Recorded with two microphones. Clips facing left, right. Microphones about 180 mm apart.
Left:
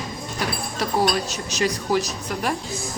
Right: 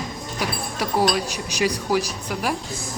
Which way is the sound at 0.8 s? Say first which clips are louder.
Right 1 dB; 10° right (ahead or behind).